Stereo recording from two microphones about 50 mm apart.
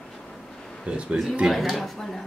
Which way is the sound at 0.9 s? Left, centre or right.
Right.